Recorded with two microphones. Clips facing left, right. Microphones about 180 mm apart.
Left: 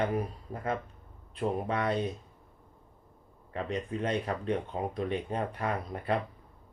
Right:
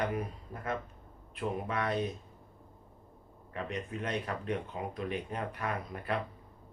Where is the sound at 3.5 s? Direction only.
30° left (ahead or behind).